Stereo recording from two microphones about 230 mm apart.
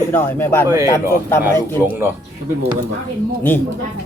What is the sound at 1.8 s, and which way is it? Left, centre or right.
Speech, centre.